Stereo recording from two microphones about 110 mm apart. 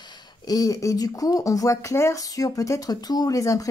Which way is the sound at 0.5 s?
30° left (ahead or behind).